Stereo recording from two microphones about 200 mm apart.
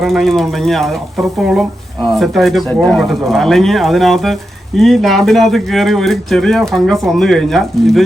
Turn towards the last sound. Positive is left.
turn(degrees=0)  # may be behind; listen again after turning